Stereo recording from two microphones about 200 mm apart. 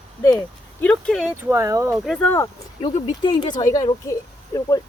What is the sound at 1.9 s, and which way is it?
Speech, 5° left (ahead or behind).